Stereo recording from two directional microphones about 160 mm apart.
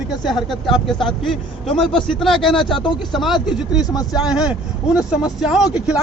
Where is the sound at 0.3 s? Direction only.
Centre (ahead or behind).